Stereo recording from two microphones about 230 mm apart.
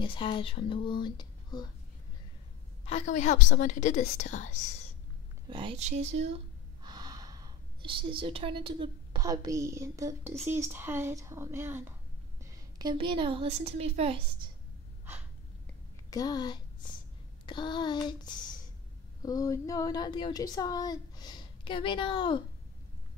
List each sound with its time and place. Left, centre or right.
0.0 s speech: left
2.8 s speech: left
5.5 s speech: right
6.8 s a woman's voice: centre
16.1 s speech: centre